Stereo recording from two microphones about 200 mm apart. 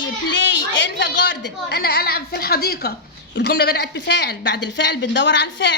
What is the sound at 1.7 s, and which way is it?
A woman's voice, 55° left (ahead or behind).